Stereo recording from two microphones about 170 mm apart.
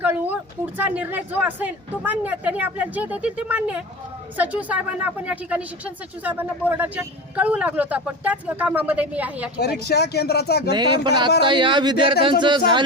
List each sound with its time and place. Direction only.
0.0 s speech: 10° right (ahead or behind)
9.9 s speech: 70° left (ahead or behind)
10.8 s speech: 25° right (ahead or behind)